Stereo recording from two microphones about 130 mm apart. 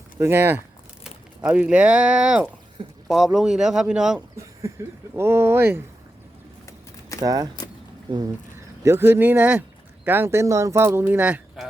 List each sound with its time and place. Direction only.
0.2 s speech: 15° right (ahead or behind)
5.1 s speech: 20° right (ahead or behind)
7.2 s speech: 30° right (ahead or behind)
8.8 s speech: 20° right (ahead or behind)